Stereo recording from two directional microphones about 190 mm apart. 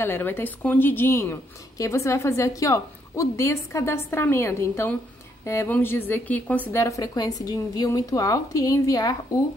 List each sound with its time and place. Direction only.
0.0 s speech: 10° left (ahead or behind)